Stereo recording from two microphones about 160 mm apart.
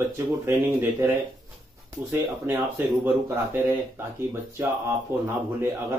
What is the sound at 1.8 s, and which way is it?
Speech, 15° right (ahead or behind).